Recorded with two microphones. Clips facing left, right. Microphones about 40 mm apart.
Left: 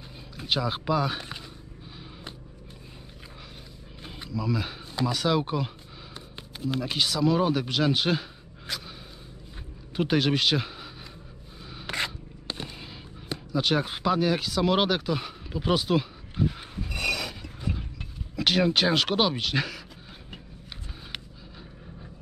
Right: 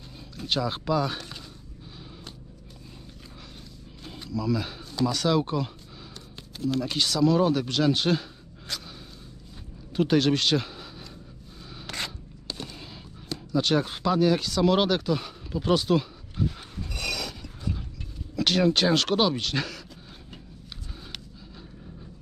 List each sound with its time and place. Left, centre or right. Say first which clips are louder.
0.4 s speech: even; centre
4.0 s a sound: right 1 dB; centre
5.0 s speech: right 1 dB; centre
9.9 s speech: right 2 dB; centre
11.7 s scrape: left 4 dB; centre
13.3 s a sound: right 1 dB; centre
18.3 s speech: right 1 dB; centre